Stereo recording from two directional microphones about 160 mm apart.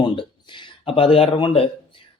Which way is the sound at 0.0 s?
30° left (ahead or behind).